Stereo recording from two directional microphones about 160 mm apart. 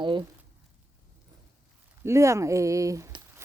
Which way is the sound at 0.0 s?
30° right (ahead or behind).